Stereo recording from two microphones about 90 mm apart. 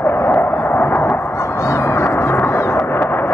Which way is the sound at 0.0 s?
25° left (ahead or behind).